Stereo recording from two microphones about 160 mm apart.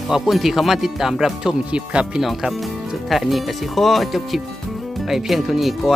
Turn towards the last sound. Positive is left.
turn(degrees=0)  # may be behind; listen again after turning